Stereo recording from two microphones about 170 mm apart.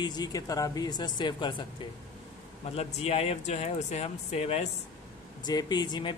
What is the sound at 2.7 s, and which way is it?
Speech, 40° left (ahead or behind).